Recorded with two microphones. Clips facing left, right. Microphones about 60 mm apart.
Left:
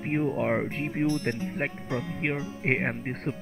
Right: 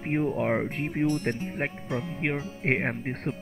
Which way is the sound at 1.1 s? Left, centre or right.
Right.